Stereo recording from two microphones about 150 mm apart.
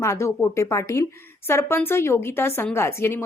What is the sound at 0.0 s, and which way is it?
A woman's voice, 20° left (ahead or behind).